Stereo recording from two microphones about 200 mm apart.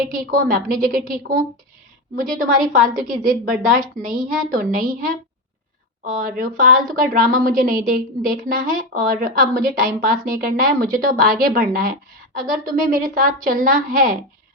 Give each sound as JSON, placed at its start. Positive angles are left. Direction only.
{"t": 0.1, "sound": "a woman's voice", "side_deg": -45}
{"t": 6.1, "sound": "a woman's voice", "side_deg": -45}